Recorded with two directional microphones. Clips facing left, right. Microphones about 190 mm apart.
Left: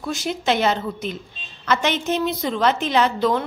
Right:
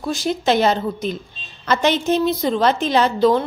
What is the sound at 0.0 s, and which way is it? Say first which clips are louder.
A woman's voice: right 4 dB; 35° right (ahead or behind).